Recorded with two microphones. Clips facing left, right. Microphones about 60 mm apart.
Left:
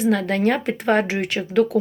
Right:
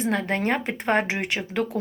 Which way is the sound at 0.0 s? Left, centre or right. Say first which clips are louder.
Left 5 dB; right.